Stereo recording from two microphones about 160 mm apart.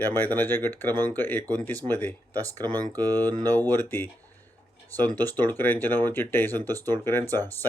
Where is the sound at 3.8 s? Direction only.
15° left (ahead or behind).